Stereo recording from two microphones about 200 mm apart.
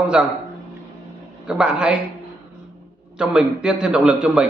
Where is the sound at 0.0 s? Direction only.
5° right (ahead or behind).